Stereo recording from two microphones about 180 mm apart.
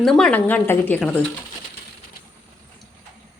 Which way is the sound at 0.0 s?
Centre (ahead or behind).